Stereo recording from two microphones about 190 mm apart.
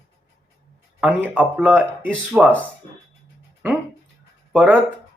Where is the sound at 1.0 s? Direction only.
10° right (ahead or behind).